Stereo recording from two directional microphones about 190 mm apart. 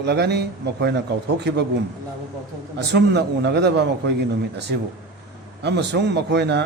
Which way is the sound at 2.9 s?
60° right (ahead or behind).